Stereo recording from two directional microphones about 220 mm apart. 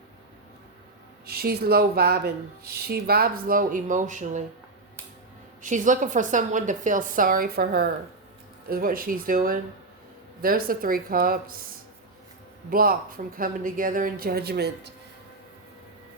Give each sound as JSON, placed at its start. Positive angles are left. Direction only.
{"t": 1.3, "sound": "speech", "side_deg": -45}
{"t": 5.6, "sound": "speech", "side_deg": -35}
{"t": 12.7, "sound": "speech", "side_deg": -40}